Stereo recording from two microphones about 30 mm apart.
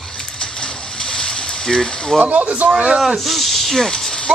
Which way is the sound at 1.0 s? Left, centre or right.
Left.